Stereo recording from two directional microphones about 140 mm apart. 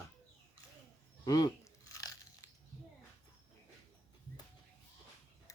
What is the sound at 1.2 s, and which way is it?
Biting, 25° left (ahead or behind).